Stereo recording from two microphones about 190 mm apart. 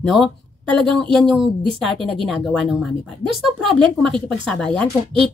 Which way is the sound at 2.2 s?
Centre (ahead or behind).